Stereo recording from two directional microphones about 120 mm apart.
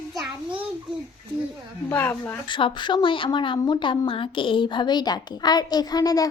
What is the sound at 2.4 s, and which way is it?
A woman's voice, 40° left (ahead or behind).